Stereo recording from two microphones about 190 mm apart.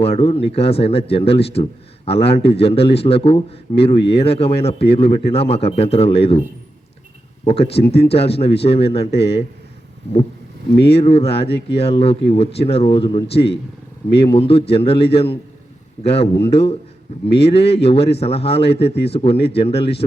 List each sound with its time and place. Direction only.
0.0 s a man's voice: 30° left (ahead or behind)
7.4 s a man's voice: 30° left (ahead or behind)
10.8 s a man's voice: 30° left (ahead or behind)